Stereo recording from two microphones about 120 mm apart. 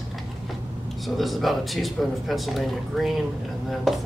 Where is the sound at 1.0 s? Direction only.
Centre (ahead or behind).